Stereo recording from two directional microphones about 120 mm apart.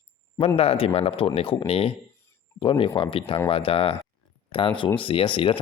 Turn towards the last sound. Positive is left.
turn(degrees=45)  # may be behind; listen again after turning